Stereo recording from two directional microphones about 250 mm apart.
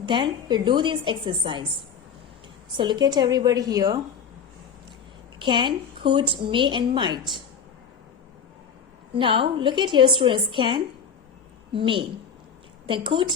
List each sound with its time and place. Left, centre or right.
0.0 s a woman's voice: centre
2.7 s a woman's voice: centre
5.4 s a woman's voice: centre
9.1 s a woman's voice: right